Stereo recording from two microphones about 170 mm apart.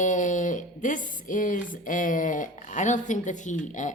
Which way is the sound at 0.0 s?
50° left (ahead or behind).